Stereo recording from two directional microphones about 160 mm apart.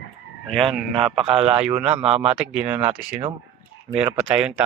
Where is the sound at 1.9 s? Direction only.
40° right (ahead or behind).